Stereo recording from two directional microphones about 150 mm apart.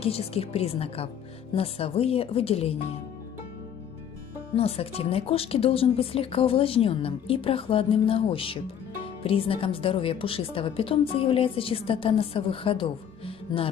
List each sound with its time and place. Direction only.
0.0 s a woman's voice: 40° left (ahead or behind)
4.6 s a woman's voice: 40° left (ahead or behind)